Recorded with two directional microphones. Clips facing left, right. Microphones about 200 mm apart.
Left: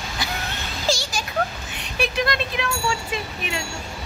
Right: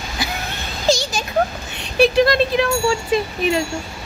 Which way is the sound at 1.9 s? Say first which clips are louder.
Right 10 dB; 35° right (ahead or behind).